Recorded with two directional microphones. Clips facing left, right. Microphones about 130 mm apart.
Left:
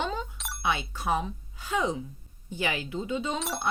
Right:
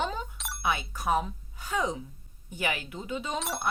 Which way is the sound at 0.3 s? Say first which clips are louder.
Even; centre (ahead or behind).